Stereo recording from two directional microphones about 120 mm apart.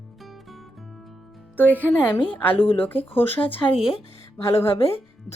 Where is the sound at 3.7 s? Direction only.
5° right (ahead or behind).